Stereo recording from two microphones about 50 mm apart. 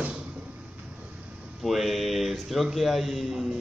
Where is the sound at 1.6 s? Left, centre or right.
Centre.